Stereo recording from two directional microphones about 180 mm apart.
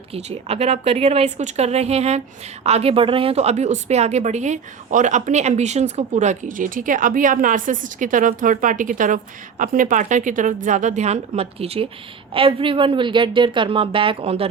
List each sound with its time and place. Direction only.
0.1 s a woman's voice: 35° right (ahead or behind)